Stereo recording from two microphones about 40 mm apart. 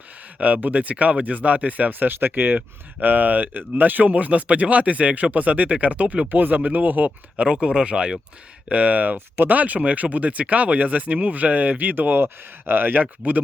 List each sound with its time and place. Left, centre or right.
0.3 s speech: right
3.0 s speech: right
6.3 s speech: right
7.4 s speech: right
8.7 s speech: right
9.1 s speech: right
9.5 s speech: right
13.0 s speech: right